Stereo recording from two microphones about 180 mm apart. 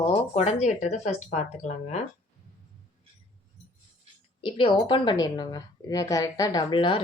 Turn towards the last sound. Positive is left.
turn(degrees=25)  # may be behind; listen again after turning